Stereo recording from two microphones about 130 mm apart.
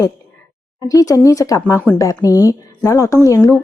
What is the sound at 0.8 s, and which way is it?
A woman's voice, 25° left (ahead or behind).